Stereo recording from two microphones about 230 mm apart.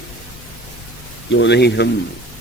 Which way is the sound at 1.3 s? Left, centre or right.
Left.